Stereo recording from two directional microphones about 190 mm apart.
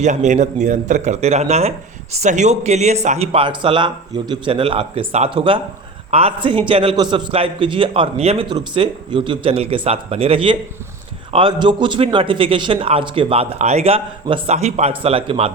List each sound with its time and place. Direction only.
0.0 s a man's voice: 40° right (ahead or behind)